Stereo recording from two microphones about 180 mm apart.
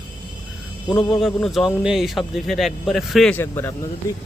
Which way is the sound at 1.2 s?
Centre (ahead or behind).